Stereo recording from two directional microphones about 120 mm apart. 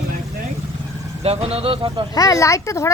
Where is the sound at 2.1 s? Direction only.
30° left (ahead or behind).